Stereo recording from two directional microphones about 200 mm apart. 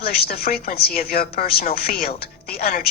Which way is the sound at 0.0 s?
50° left (ahead or behind).